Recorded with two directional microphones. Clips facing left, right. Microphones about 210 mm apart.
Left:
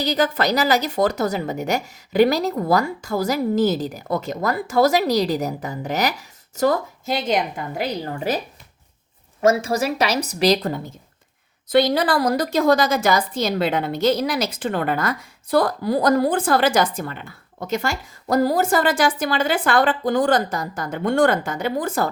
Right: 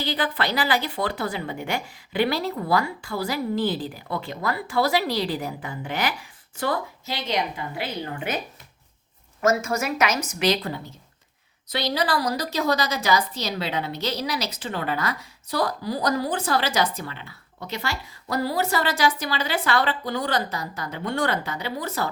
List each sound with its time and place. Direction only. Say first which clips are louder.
0.0 s a woman's voice: left 6 dB; 45° left (ahead or behind)
9.4 s a woman's voice: left 4 dB; 30° left (ahead or behind); by 22.1 s 50° left (ahead or behind)